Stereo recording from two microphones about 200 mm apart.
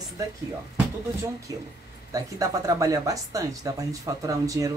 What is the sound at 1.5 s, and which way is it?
A woman's voice, 15° right (ahead or behind).